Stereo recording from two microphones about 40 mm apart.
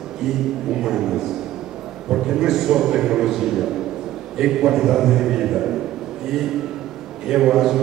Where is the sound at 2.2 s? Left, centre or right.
Centre.